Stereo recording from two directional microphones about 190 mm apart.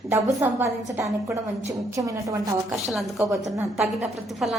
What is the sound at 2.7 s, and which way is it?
Speech, centre (ahead or behind).